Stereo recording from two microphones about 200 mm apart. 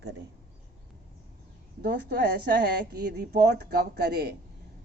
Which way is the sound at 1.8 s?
55° right (ahead or behind).